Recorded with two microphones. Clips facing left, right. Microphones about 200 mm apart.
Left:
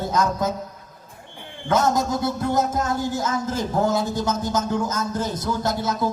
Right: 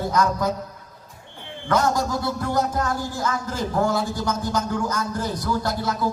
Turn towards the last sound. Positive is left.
turn(degrees=20)  # may be behind; listen again after turning